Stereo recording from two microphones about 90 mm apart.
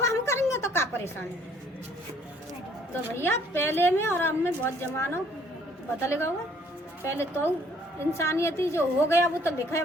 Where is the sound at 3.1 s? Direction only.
25° left (ahead or behind).